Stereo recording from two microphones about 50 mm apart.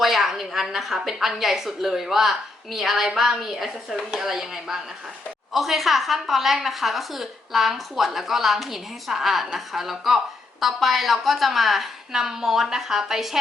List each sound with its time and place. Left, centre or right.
0.0 s a woman's voice: centre